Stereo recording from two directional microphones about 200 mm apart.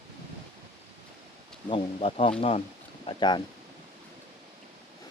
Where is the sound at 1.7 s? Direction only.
25° left (ahead or behind).